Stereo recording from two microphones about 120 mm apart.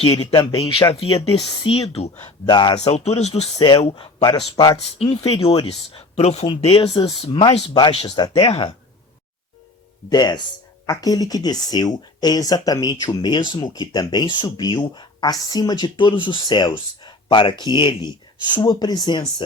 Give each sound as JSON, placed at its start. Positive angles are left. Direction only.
{"t": 0.0, "sound": "speech", "side_deg": 55}
{"t": 2.5, "sound": "speech", "side_deg": 40}
{"t": 2.8, "sound": "speech", "side_deg": 65}
{"t": 3.8, "sound": "a man's voice", "side_deg": 50}
{"t": 4.5, "sound": "speech", "side_deg": 35}
{"t": 4.8, "sound": "speech", "side_deg": 55}
{"t": 6.6, "sound": "speech", "side_deg": 50}
{"t": 10.1, "sound": "speech", "side_deg": 35}